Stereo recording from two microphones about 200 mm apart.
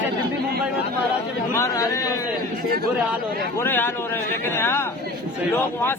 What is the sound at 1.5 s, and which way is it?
Speech, 15° left (ahead or behind).